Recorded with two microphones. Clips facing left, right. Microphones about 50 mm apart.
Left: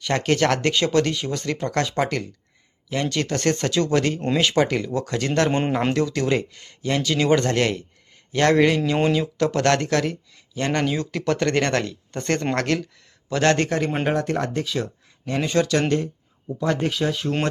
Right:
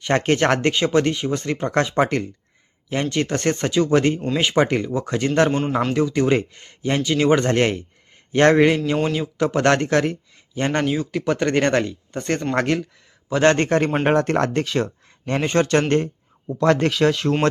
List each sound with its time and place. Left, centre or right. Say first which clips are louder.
0.0 s speech: right 2 dB; right
10.9 s speech: right 2 dB; centre
13.7 s speech: right 4 dB; right
15.3 s speech: right 2 dB; right
16.6 s speech: right 6 dB; right